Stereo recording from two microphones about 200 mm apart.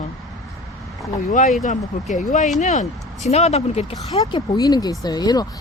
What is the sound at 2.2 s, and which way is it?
Speech, 40° left (ahead or behind).